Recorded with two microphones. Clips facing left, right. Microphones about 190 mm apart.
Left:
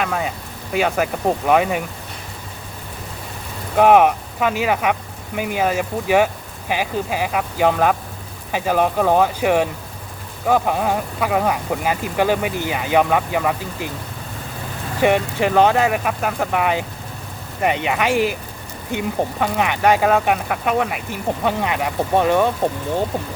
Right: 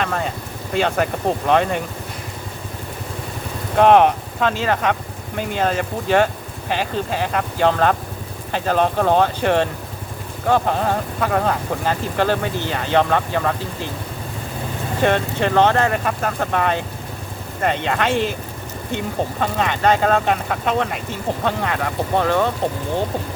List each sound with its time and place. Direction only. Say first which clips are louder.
0.0 s speech: even; 5° left (ahead or behind)
3.8 s speech: even; 10° left (ahead or behind)
15.0 s speech: left 2 dB; 10° left (ahead or behind)